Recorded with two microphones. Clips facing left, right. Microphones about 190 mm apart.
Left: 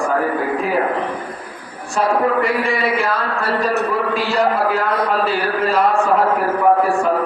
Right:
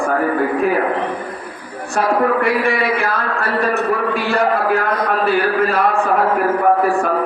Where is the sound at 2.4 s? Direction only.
60° right (ahead or behind).